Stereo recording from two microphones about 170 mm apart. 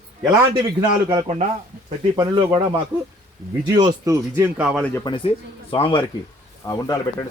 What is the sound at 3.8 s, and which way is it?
Speech, 20° right (ahead or behind).